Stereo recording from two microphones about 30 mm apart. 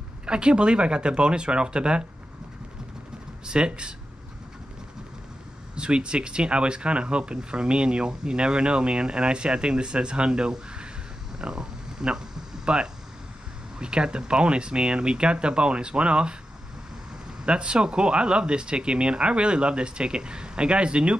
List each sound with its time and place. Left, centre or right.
0.3 s speech: right
3.4 s speech: right
5.8 s speech: right
17.5 s speech: right